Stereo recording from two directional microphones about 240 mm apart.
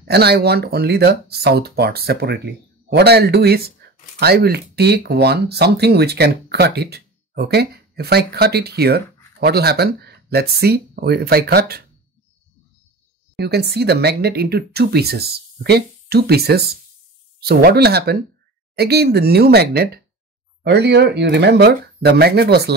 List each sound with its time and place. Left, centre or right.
0.1 s speech: right
13.4 s speech: right